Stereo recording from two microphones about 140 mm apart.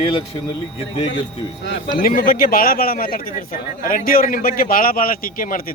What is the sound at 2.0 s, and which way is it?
A man's voice, 80° left.